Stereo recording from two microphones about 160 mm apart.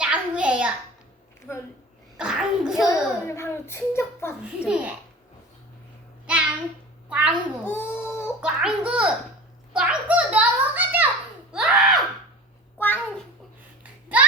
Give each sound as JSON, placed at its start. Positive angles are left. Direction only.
{"t": 0.0, "sound": "a sound", "side_deg": -5}
{"t": 1.5, "sound": "a child's voice", "side_deg": 15}
{"t": 2.1, "sound": "speech", "side_deg": -5}
{"t": 2.8, "sound": "a child's voice", "side_deg": 15}
{"t": 4.6, "sound": "a child's voice", "side_deg": -5}
{"t": 7.1, "sound": "a child's voice", "side_deg": -10}
{"t": 7.6, "sound": "a sound", "side_deg": 15}
{"t": 8.4, "sound": "a child's voice", "side_deg": -5}
{"t": 12.8, "sound": "a child's voice", "side_deg": 10}
{"t": 13.8, "sound": "a sound", "side_deg": -10}